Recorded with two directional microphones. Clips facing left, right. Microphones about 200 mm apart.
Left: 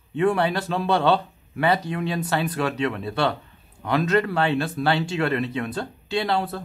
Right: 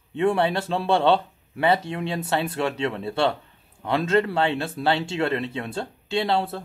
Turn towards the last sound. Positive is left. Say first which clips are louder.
# right 1 dB
turn(degrees=-25)  # may be behind; listen again after turning